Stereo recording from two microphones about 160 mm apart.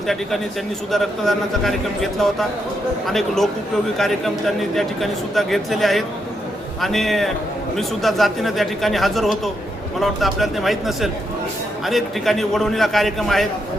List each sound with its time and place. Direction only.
0.9 s a man's voice: centre (ahead or behind)